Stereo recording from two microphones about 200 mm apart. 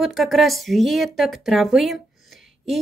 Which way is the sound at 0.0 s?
Centre (ahead or behind).